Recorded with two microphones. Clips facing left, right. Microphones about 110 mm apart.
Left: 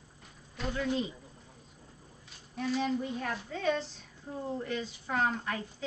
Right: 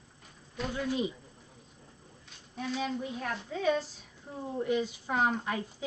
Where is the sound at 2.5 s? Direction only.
Centre (ahead or behind).